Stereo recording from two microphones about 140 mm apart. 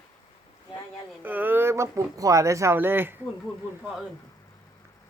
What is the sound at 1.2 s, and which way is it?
Speech, 15° right (ahead or behind).